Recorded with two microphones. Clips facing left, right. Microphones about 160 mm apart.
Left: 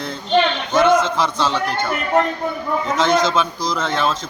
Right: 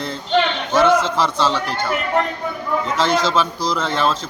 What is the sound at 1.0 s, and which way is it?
Speech, 30° right (ahead or behind).